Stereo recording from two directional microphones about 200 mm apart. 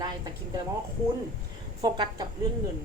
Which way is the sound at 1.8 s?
20° right (ahead or behind).